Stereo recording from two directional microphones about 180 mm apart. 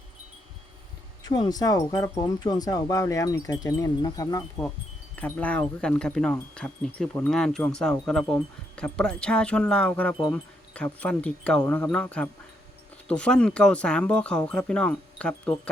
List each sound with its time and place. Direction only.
1.2 s speech: 20° left (ahead or behind)
5.1 s speech: 5° left (ahead or behind)
10.2 s speech: 25° left (ahead or behind)
10.8 s speech: 5° left (ahead or behind)